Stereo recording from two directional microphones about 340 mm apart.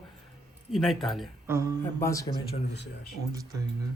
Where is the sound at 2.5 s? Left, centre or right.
Left.